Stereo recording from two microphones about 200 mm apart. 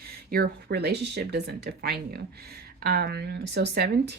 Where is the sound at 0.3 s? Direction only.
50° right (ahead or behind).